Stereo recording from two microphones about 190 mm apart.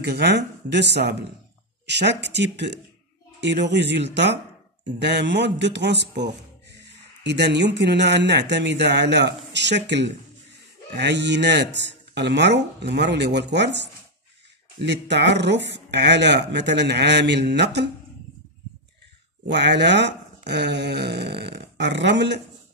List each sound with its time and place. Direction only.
0.0 s speech: 60° right (ahead or behind)
19.4 s speech: 65° right (ahead or behind)